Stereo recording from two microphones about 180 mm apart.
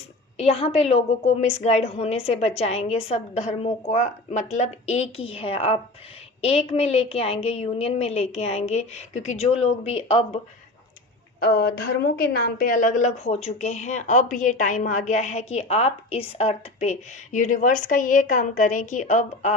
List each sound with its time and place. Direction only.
0.3 s a woman's voice: 35° left (ahead or behind)
11.3 s a woman's voice: 60° left (ahead or behind); by 19.5 s 40° left (ahead or behind)